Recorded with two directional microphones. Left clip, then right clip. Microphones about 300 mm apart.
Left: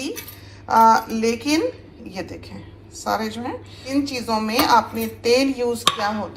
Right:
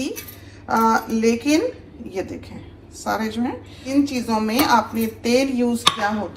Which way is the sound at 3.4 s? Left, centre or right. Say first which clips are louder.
Right 3 dB; centre.